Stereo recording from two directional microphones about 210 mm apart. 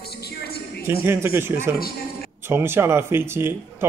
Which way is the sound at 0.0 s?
50° left (ahead or behind).